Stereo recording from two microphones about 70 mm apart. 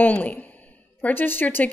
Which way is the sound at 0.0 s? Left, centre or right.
Left.